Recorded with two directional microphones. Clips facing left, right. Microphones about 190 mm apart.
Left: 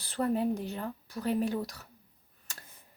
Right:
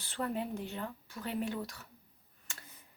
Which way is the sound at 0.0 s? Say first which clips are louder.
Left 7 dB; 40° left (ahead or behind).